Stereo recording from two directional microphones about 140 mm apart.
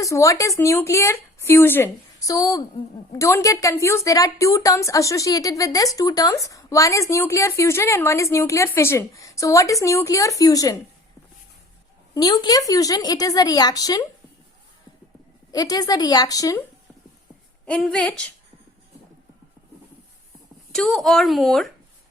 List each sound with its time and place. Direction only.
0.0 s a woman's voice: 20° left (ahead or behind)
12.1 s a woman's voice: 30° left (ahead or behind)
15.5 s a woman's voice: 25° left (ahead or behind)
17.7 s a woman's voice: 10° left (ahead or behind)
20.7 s a woman's voice: 5° left (ahead or behind)